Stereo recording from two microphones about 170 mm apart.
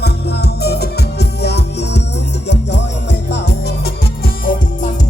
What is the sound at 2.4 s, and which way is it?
Music, 90° left.